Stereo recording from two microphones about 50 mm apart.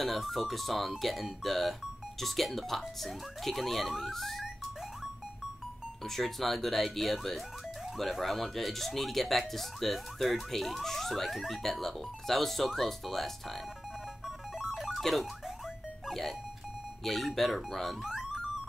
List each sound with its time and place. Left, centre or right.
0.0 s speech: centre
4.1 s music: centre
6.0 s speech: centre
14.2 s music: centre
14.9 s telephone bell ringing: centre
16.1 s a sound: centre
17.0 s speech: centre
18.0 s music: centre